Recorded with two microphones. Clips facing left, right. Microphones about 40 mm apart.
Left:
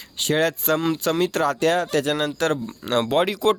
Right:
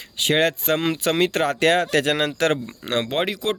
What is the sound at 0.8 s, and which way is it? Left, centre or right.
Speech, right.